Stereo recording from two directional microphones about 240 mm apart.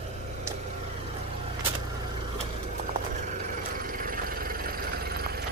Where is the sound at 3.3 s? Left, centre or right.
Right.